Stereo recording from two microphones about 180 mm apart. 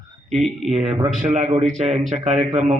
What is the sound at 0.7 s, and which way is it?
A man's voice, 30° right (ahead or behind).